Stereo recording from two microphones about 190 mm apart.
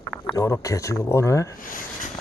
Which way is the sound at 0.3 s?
15° left (ahead or behind).